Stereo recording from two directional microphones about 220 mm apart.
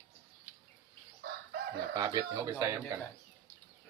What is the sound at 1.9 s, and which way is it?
Speech, 15° right (ahead or behind).